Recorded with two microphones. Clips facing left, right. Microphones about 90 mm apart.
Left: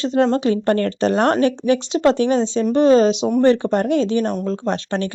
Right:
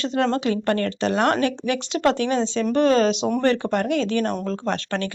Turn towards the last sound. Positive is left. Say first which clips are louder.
# left 4 dB
turn(degrees=30)  # may be behind; listen again after turning